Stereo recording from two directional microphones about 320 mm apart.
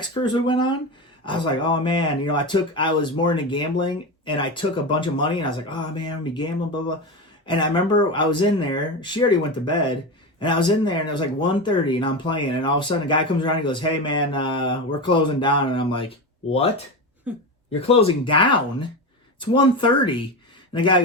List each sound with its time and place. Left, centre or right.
0.0 s speech: centre
17.3 s speech: centre
17.7 s speech: centre